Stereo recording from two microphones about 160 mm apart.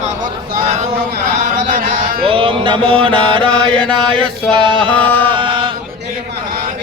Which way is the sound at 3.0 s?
35° right (ahead or behind).